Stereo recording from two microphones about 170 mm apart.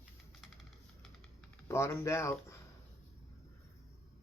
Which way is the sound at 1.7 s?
15° left (ahead or behind).